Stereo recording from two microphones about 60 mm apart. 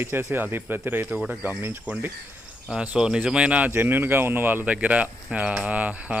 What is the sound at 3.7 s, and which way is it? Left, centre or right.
Speech, right.